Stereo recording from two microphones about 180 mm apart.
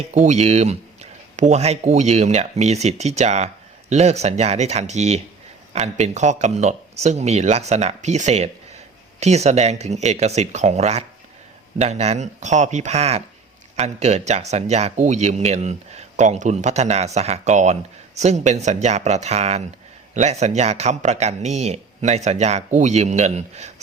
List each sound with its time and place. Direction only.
0.1 s speech: 40° right (ahead or behind)